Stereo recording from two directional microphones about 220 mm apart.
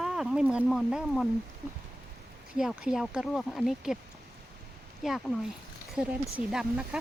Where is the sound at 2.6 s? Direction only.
5° right (ahead or behind).